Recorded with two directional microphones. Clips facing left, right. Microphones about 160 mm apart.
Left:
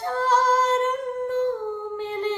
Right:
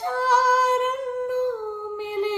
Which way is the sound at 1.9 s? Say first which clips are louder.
Right 3 dB; 10° right (ahead or behind).